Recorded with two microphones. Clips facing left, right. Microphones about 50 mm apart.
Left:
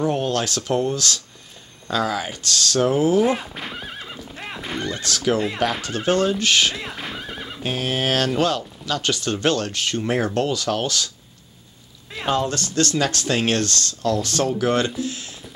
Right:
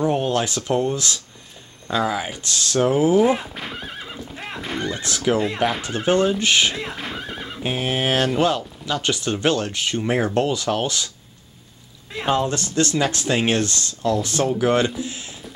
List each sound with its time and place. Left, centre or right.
0.0 s speech: centre
3.2 s speech: centre
4.3 s clip-clop: centre
4.8 s speech: centre
6.7 s horse: centre
7.6 s speech: centre
12.1 s speech: centre